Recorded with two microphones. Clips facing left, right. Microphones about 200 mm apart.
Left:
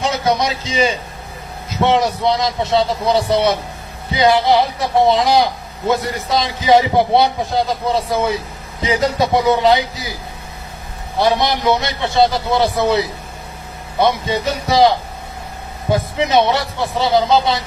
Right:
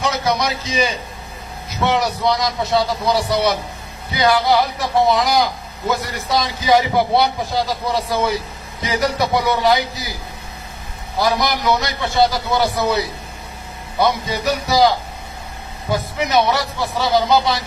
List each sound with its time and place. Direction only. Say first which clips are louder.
0.0 s a man's voice: left 2 dB; 25° left (ahead or behind)
11.2 s a man's voice: left 3 dB; 25° left (ahead or behind)